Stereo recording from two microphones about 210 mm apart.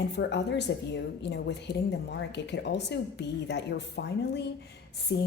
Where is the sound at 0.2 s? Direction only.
55° left (ahead or behind).